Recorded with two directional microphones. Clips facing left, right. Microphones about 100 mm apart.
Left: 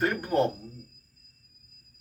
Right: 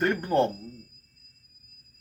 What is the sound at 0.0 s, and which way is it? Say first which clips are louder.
Speech: right 2 dB; 5° left (ahead or behind).